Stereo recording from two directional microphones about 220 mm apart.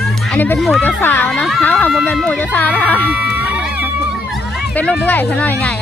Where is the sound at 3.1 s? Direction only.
5° right (ahead or behind).